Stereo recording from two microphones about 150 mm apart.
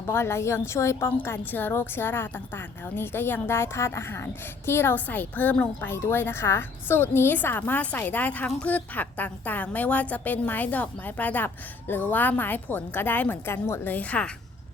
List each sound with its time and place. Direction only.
0.1 s a woman's voice: 15° left (ahead or behind)